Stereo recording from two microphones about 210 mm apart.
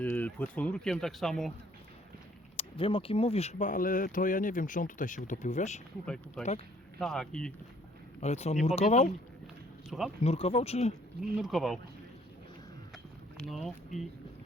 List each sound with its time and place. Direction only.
0.0 s speech: 10° left (ahead or behind)
2.6 s speech: 25° left (ahead or behind)
6.4 s speech: centre (ahead or behind)
8.2 s speech: 30° left (ahead or behind)
9.9 s speech: centre (ahead or behind)
10.2 s speech: 30° left (ahead or behind)
11.2 s speech: centre (ahead or behind)
12.9 s a sound: centre (ahead or behind)